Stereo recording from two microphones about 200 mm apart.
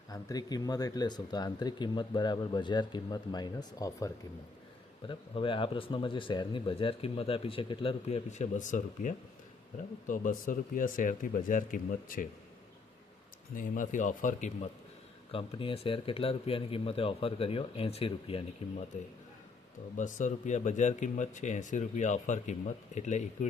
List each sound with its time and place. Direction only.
0.1 s speech: 20° left (ahead or behind); by 12.2 s 45° left (ahead or behind)
13.6 s speech: 40° left (ahead or behind)
15.3 s speech: 25° left (ahead or behind)
20.0 s speech: 40° left (ahead or behind)